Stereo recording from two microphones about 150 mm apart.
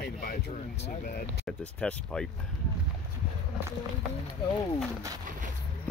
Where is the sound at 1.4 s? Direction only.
5° left (ahead or behind).